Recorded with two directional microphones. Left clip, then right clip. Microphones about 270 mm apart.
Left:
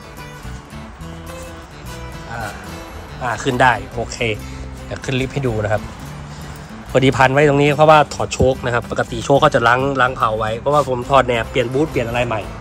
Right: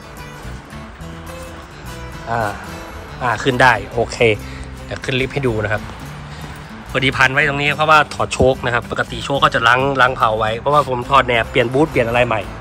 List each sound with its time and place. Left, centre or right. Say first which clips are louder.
2.2 s speech: right 8 dB; centre
3.2 s speech: right 2 dB; centre
4.9 s speech: right 3 dB; centre
6.9 s a man's voice: left 1 dB; left
8.2 s speech: right 2 dB; centre